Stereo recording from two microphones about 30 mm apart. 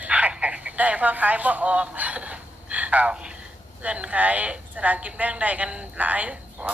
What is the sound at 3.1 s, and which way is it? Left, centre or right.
Speech, right.